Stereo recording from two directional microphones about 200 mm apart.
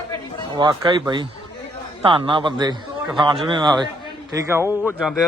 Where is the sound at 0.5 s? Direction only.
20° right (ahead or behind).